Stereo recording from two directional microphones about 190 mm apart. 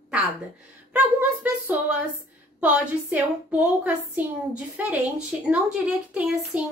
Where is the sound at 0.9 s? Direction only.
10° right (ahead or behind).